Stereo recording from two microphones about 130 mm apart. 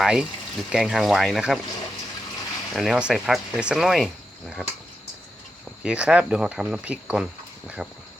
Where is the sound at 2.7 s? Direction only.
Centre (ahead or behind).